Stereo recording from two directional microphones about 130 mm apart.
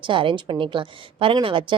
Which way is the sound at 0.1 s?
40° right (ahead or behind).